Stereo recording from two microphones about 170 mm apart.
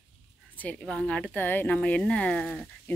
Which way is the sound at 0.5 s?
10° left (ahead or behind).